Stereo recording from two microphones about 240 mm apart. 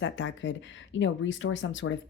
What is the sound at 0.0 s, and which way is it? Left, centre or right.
Speech, left.